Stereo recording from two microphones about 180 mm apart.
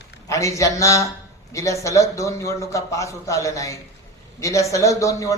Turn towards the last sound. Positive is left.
turn(degrees=15)  # may be behind; listen again after turning